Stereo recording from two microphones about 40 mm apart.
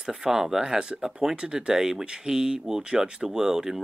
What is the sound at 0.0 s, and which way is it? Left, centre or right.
Speech, centre.